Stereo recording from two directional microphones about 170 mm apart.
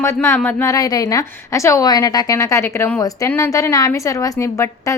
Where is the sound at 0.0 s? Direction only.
15° left (ahead or behind).